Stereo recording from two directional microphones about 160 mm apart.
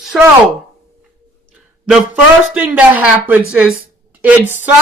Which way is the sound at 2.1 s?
10° right (ahead or behind).